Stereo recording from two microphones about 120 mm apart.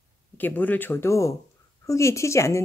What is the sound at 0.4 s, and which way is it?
Speech, 15° left (ahead or behind).